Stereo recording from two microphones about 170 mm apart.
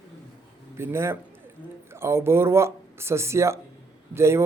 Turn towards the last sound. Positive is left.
turn(degrees=-15)  # may be behind; listen again after turning